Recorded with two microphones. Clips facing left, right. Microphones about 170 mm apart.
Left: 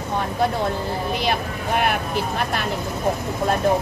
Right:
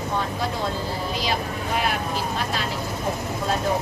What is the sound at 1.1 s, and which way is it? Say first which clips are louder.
Speech: left 3 dB; 60° left (ahead or behind).